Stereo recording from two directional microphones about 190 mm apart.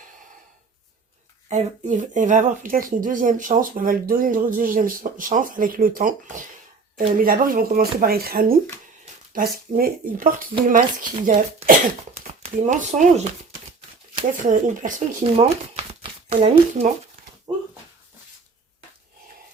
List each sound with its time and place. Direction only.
1.5 s speech: 40° right (ahead or behind)
14.3 s speech: 45° right (ahead or behind)
17.5 s a sound: 20° right (ahead or behind)